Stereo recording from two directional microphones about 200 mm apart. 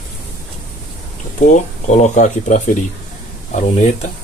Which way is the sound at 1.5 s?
40° left (ahead or behind).